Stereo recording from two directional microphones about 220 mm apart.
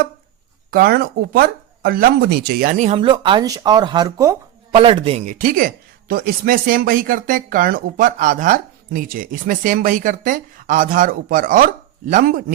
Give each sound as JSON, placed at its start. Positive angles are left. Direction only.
{"t": 0.7, "sound": "speech", "side_deg": -45}